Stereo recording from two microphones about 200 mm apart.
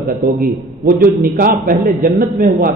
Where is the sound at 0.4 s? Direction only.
45° right (ahead or behind).